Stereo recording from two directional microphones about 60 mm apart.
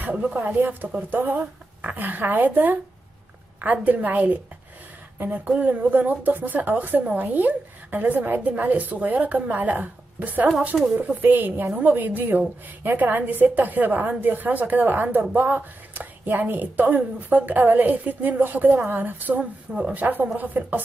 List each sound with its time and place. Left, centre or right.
0.1 s a woman's voice: right